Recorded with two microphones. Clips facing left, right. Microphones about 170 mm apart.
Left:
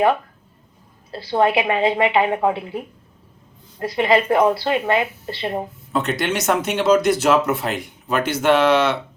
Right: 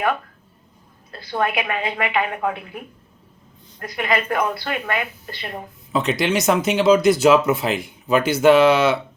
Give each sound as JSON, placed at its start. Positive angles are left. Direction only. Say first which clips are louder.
{"t": 1.1, "sound": "a woman's voice", "louder": "left 5 dB", "side_deg": 25}
{"t": 6.0, "sound": "speech", "louder": "right 2 dB", "side_deg": 0}